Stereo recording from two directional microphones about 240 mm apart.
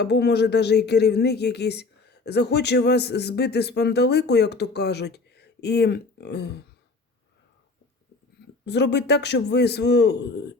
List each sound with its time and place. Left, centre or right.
0.0 s speech: left
8.6 s speech: left